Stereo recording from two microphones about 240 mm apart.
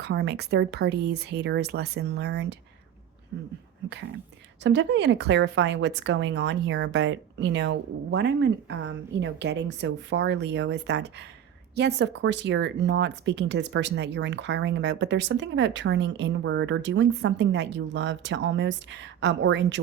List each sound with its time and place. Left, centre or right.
0.0 s speech: right
4.6 s speech: right